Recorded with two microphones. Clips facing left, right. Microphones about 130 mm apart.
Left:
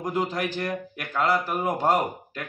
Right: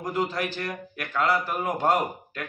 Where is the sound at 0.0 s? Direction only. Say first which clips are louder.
Left 1 dB; 15° left (ahead or behind).